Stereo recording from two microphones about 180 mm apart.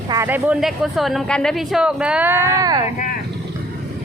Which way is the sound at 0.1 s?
15° right (ahead or behind).